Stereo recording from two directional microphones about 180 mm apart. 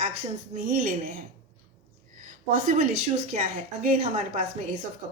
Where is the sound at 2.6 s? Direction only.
45° right (ahead or behind).